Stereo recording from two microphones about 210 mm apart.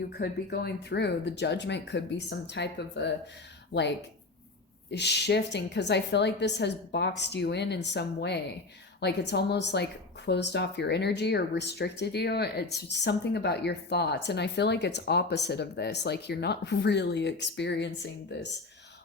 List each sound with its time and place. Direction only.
0.1 s speech: 50° left (ahead or behind)
4.9 s speech: 55° left (ahead or behind)